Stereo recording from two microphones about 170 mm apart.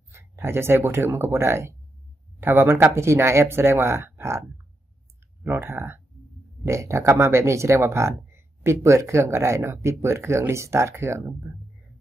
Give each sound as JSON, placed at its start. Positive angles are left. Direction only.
{"t": 0.1, "sound": "speech", "side_deg": -15}